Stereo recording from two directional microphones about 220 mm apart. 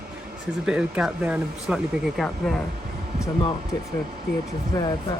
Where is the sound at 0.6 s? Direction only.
5° right (ahead or behind).